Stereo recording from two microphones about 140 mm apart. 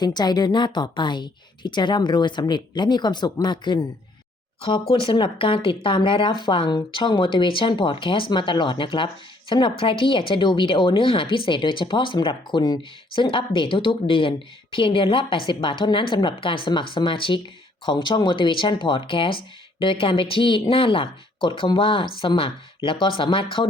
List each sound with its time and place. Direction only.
0.0 s speech: 30° left (ahead or behind)